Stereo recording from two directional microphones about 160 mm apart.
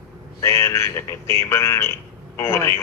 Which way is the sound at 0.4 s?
15° left (ahead or behind).